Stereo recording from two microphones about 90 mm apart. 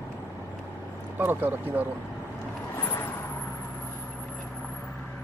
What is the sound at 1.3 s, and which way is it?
Speech, 20° right (ahead or behind).